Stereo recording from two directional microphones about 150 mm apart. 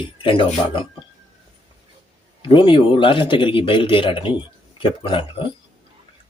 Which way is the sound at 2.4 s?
35° left (ahead or behind).